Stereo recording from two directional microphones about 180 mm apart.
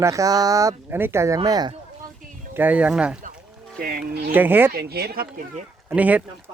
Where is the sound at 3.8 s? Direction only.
60° right (ahead or behind).